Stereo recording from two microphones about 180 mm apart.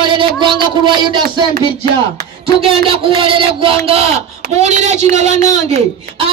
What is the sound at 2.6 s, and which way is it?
Speech, 30° right (ahead or behind).